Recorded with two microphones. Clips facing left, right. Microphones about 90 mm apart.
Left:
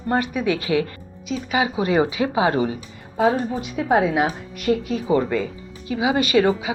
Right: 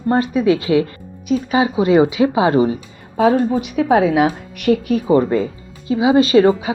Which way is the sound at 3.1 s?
90° right.